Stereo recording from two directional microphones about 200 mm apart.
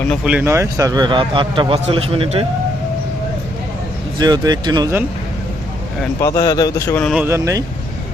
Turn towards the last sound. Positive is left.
turn(degrees=-15)  # may be behind; listen again after turning